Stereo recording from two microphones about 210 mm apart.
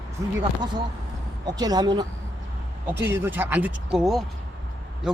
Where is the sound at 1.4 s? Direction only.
20° right (ahead or behind).